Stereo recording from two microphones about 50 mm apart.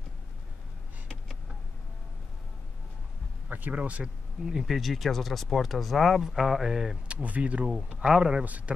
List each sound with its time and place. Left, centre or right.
3.7 s speech: right
4.6 s speech: centre
6.2 s mantra: centre
7.1 s speech: right
8.5 s speech: right